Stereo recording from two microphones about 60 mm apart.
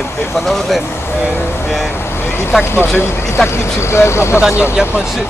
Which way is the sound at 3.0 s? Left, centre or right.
Left.